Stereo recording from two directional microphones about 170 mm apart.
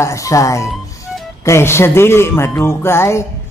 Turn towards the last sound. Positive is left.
turn(degrees=15)  # may be behind; listen again after turning